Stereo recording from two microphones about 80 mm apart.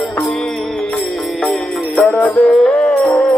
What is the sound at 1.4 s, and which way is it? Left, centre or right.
Music, centre.